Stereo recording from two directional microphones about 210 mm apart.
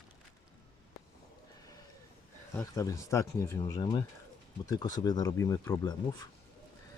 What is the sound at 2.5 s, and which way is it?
Speech, 15° left (ahead or behind).